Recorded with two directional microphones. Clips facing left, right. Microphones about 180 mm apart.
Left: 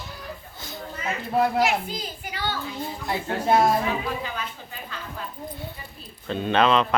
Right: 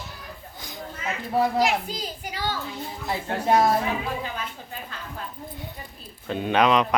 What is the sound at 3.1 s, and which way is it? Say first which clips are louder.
Speech: even; 5° left (ahead or behind).